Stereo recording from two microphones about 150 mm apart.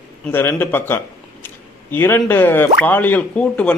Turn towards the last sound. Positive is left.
turn(degrees=10)  # may be behind; listen again after turning